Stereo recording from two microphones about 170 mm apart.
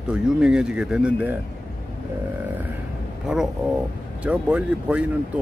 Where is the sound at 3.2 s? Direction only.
5° right (ahead or behind).